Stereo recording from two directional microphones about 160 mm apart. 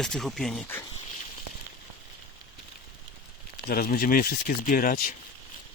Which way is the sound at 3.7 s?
60° left (ahead or behind).